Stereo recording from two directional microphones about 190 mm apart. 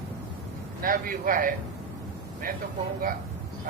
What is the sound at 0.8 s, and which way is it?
Speech, 50° right (ahead or behind).